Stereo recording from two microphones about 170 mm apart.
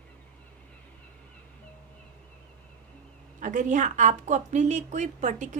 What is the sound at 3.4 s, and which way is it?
A woman's voice, 50° right (ahead or behind).